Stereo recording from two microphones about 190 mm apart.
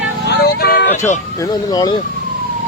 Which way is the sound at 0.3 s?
60° left (ahead or behind).